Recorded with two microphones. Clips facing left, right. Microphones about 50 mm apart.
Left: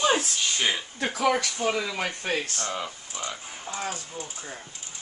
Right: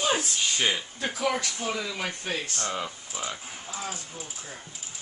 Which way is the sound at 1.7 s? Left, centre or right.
Left.